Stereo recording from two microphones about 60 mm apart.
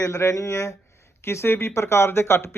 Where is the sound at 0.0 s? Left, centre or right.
Left.